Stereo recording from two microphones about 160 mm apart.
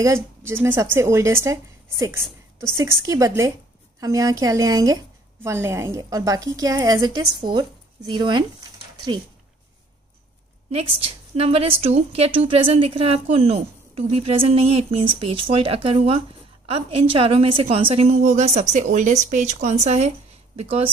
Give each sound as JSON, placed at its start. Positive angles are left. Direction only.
{"t": 0.0, "sound": "a woman's voice", "side_deg": -15}
{"t": 10.7, "sound": "a woman's voice", "side_deg": -35}